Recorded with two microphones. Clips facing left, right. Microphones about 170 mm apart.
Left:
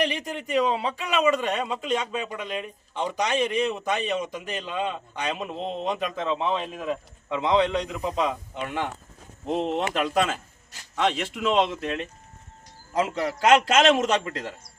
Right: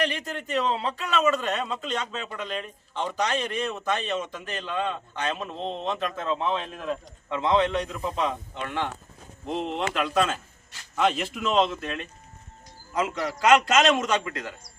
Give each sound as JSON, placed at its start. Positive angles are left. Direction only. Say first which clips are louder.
{"t": 0.0, "sound": "a man's voice", "louder": "left 1 dB", "side_deg": 15}
{"t": 9.5, "sound": "speech", "louder": "left 4 dB", "side_deg": 40}
{"t": 11.4, "sound": "a man's voice", "louder": "left 1 dB", "side_deg": 10}
{"t": 11.8, "sound": "a man's voice", "louder": "left 4 dB", "side_deg": 25}